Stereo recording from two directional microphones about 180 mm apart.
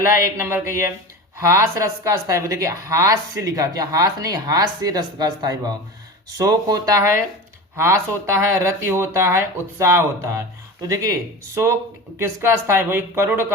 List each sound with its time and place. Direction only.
0.0 s a woman's voice: 15° right (ahead or behind)